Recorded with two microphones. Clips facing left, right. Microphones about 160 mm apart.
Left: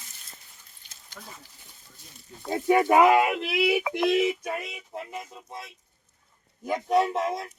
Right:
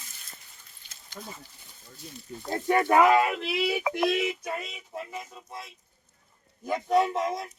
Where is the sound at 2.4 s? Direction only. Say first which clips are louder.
Left 3 dB; 10° left (ahead or behind).